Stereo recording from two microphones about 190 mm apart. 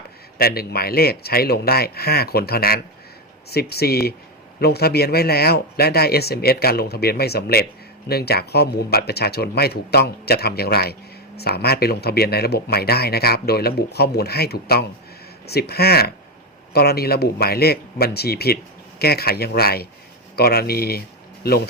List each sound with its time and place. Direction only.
0.3 s speech: 55° left (ahead or behind)